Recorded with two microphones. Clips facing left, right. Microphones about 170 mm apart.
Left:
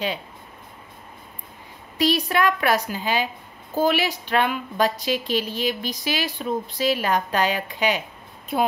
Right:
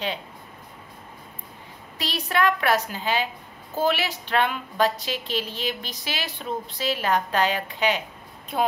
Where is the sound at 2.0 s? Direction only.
10° left (ahead or behind).